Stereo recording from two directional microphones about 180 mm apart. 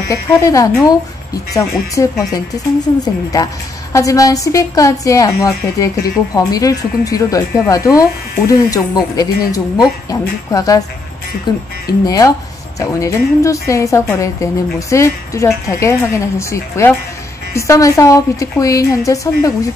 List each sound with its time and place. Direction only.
0.1 s speech: 15° left (ahead or behind)
3.9 s a woman's voice: 15° left (ahead or behind)